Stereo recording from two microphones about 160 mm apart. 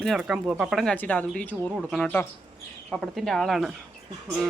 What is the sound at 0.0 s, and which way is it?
Speech, centre (ahead or behind).